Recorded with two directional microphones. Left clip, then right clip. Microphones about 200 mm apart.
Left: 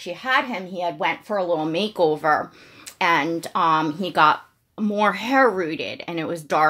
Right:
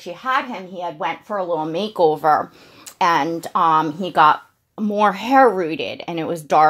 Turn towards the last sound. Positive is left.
turn(degrees=-20)  # may be behind; listen again after turning